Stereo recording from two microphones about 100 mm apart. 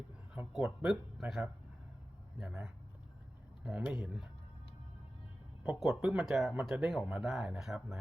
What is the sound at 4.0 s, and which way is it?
Speech, 10° right (ahead or behind).